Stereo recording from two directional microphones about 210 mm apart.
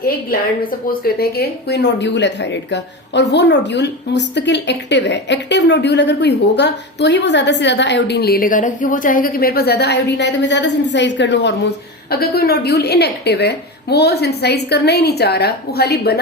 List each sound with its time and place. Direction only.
0.9 s a woman's voice: 45° left (ahead or behind)